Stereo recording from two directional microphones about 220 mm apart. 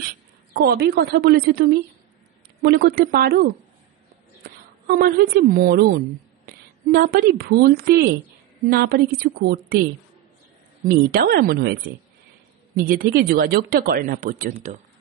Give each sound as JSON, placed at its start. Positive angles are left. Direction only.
{"t": 0.0, "sound": "a woman's voice", "side_deg": -45}
{"t": 10.9, "sound": "a woman's voice", "side_deg": -40}